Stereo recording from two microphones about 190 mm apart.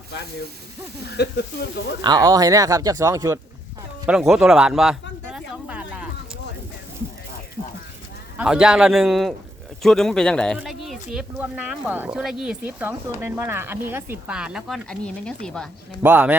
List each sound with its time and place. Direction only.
1.1 s speech: 60° left (ahead or behind)
2.0 s speech: 20° right (ahead or behind)
4.0 s a sound: 5° right (ahead or behind)
8.4 s speech: 5° right (ahead or behind)
16.0 s speech: 10° right (ahead or behind)